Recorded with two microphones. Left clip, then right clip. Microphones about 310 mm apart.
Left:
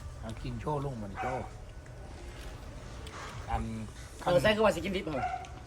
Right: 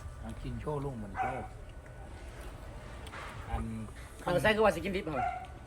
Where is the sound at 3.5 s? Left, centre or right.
Left.